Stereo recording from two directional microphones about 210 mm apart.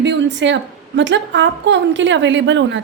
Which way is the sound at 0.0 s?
55° right (ahead or behind).